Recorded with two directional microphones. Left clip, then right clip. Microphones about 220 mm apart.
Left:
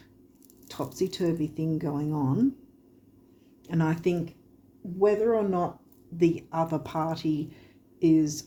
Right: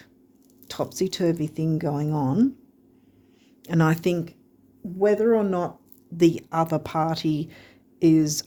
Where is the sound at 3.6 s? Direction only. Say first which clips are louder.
Right 5 dB; 55° right (ahead or behind).